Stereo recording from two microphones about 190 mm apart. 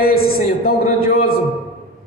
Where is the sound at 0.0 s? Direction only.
50° left (ahead or behind).